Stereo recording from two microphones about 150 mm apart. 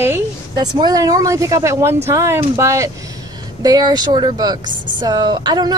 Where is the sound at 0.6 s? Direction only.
25° right (ahead or behind).